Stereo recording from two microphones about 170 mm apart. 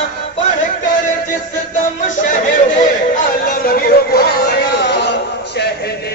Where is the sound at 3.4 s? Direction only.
60° left (ahead or behind); by 5.1 s 80° left.